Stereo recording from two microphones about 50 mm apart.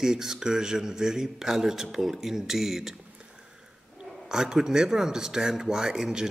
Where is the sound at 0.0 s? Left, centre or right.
Centre.